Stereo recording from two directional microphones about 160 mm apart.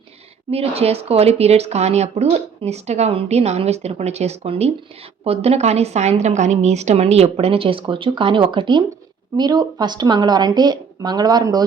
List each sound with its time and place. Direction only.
0.5 s speech: 40° right (ahead or behind); by 11.6 s 25° right (ahead or behind)